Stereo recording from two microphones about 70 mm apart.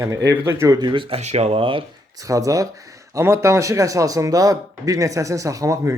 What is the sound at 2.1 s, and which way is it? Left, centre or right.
Speech, right.